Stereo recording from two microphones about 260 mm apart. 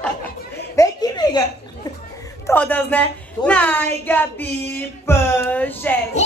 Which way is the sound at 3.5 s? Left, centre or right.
Centre.